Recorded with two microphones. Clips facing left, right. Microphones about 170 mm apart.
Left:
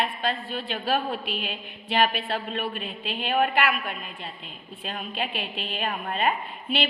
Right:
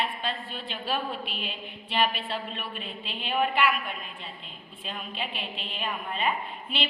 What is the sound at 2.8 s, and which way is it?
Speech, 10° left (ahead or behind).